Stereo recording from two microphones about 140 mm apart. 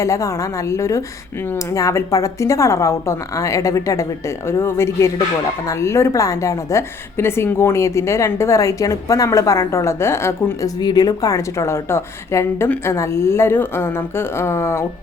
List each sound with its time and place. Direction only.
0.0 s a woman's voice: 20° left (ahead or behind)